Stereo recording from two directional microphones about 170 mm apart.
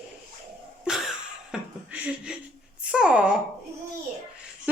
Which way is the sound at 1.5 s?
5° right (ahead or behind).